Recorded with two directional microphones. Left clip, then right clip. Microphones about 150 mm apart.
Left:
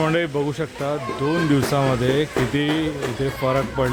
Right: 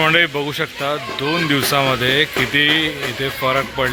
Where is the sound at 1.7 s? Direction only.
10° left (ahead or behind).